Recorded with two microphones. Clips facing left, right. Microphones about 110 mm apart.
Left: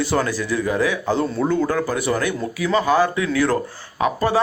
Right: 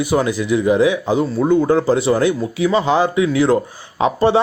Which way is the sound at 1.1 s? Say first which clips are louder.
Right 4 dB; centre (ahead or behind).